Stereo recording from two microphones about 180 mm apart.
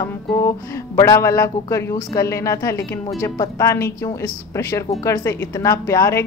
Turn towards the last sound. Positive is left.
turn(degrees=15)  # may be behind; listen again after turning